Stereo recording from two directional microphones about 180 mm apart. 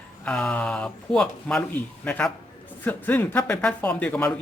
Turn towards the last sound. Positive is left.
turn(degrees=10)  # may be behind; listen again after turning